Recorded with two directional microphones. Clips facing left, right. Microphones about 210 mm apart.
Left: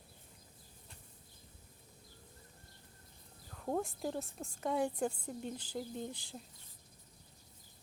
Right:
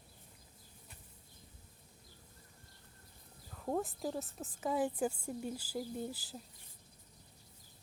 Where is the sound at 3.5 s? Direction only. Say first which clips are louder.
Even; centre (ahead or behind).